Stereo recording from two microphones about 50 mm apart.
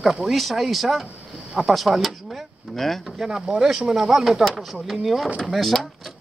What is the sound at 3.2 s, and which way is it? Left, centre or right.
Speech, centre.